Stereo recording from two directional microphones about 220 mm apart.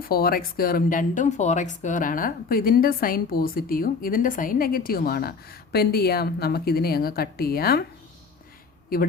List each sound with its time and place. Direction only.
0.0 s speech: 40° left (ahead or behind)